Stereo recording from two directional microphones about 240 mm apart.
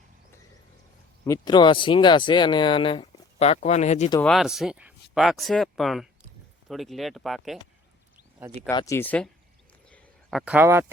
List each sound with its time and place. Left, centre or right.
1.2 s speech: centre
4.2 s speech: centre
8.7 s speech: centre
9.9 s a sound: centre